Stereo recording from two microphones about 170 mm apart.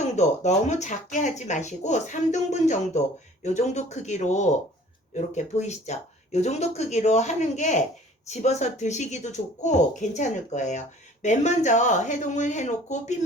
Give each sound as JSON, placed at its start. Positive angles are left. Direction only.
{"t": 0.0, "sound": "speech", "side_deg": 45}